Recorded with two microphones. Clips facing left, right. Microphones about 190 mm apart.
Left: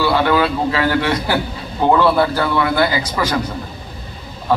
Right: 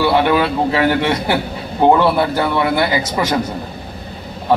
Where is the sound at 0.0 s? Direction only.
20° right (ahead or behind).